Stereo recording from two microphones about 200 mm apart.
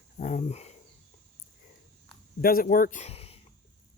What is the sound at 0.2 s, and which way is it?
Speech, 40° left (ahead or behind).